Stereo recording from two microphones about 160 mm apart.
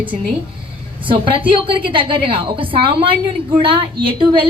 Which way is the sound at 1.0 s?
30° right (ahead or behind).